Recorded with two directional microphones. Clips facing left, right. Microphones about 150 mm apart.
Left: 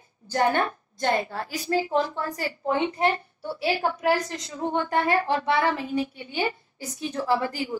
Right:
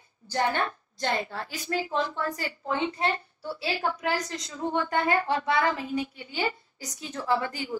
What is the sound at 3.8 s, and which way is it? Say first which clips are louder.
Speech: left 5 dB; 40° left (ahead or behind).